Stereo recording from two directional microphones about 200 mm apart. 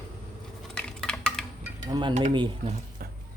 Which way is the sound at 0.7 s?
5° left (ahead or behind).